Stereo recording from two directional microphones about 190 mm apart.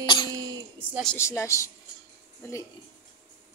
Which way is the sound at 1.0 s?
15° left (ahead or behind).